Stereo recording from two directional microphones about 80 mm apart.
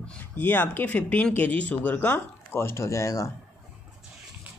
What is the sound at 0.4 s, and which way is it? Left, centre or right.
Speech, left.